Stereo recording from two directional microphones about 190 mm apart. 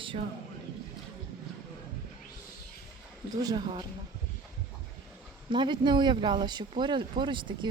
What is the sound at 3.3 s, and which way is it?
Speech, 20° right (ahead or behind).